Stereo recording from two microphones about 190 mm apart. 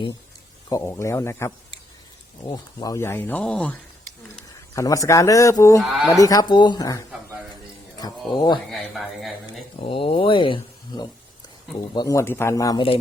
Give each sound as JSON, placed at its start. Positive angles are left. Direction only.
{"t": 0.7, "sound": "speech", "side_deg": 15}
{"t": 4.4, "sound": "speech", "side_deg": 15}
{"t": 5.8, "sound": "speech", "side_deg": 0}
{"t": 6.1, "sound": "speech", "side_deg": 20}
{"t": 8.7, "sound": "speech", "side_deg": 0}
{"t": 9.7, "sound": "speech", "side_deg": 25}